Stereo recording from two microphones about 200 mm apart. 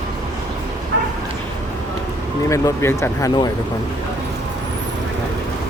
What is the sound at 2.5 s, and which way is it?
Speech, 15° left (ahead or behind).